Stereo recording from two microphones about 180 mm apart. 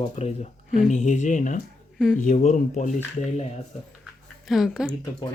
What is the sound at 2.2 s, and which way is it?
Speech, 45° left (ahead or behind).